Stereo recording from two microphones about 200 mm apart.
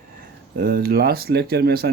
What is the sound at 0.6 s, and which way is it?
Speech, 50° right (ahead or behind).